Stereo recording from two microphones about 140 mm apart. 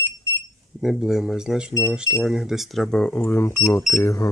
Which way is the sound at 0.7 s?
Centre (ahead or behind).